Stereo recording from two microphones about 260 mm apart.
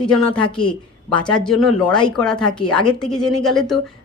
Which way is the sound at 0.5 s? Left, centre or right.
Centre.